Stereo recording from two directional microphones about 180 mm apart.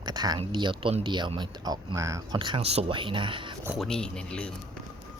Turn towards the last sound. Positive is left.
turn(degrees=5)  # may be behind; listen again after turning